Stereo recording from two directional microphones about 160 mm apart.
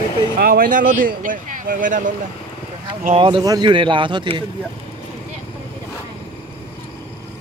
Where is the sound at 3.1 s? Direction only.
30° right (ahead or behind).